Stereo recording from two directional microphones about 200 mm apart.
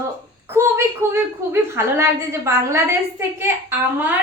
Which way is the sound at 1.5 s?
15° right (ahead or behind).